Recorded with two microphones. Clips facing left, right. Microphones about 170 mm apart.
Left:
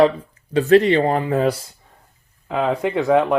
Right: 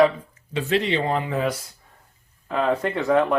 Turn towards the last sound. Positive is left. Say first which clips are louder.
# left 3 dB
turn(degrees=15)  # may be behind; listen again after turning